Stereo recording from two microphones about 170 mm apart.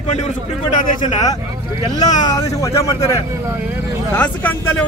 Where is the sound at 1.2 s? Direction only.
20° left (ahead or behind).